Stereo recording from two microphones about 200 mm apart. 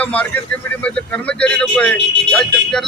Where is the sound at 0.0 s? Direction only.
5° left (ahead or behind).